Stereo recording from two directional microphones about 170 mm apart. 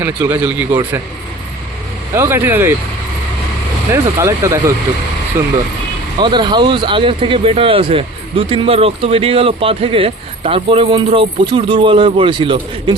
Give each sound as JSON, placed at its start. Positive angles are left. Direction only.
{"t": 0.0, "sound": "speech", "side_deg": -10}
{"t": 2.1, "sound": "speech", "side_deg": -15}
{"t": 3.9, "sound": "speech", "side_deg": -15}
{"t": 6.1, "sound": "speech", "side_deg": -25}